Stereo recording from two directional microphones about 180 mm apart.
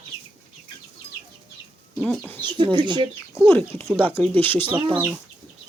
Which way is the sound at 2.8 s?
25° right (ahead or behind).